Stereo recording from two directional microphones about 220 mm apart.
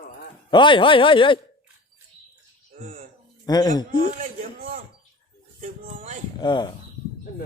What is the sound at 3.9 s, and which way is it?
A man's voice, 40° right (ahead or behind).